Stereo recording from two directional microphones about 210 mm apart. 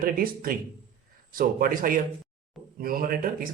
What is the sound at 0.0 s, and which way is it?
Speech, 45° right (ahead or behind).